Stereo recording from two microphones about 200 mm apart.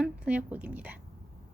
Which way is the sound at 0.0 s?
5° right (ahead or behind).